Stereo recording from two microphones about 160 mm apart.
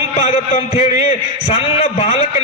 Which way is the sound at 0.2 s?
45° left (ahead or behind).